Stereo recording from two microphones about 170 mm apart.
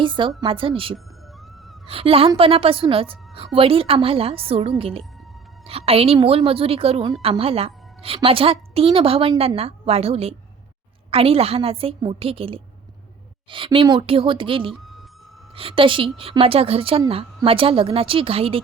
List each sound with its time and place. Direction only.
0.0 s a woman's voice: 30° right (ahead or behind)
1.9 s a woman's voice: 35° right (ahead or behind)